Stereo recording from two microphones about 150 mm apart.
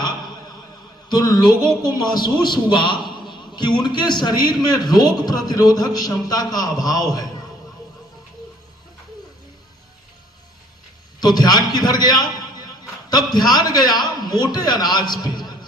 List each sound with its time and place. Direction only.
1.1 s a man's voice: 25° left (ahead or behind)
11.2 s a man's voice: 25° left (ahead or behind)